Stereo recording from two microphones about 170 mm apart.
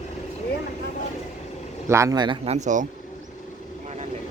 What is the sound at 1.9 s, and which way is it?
Speech, 20° right (ahead or behind).